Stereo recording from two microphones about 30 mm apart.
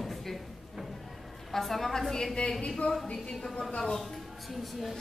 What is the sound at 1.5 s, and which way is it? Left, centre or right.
Speech, centre.